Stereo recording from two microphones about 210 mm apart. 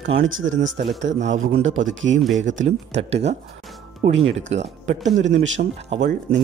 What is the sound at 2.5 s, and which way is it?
Speech, 65° right (ahead or behind).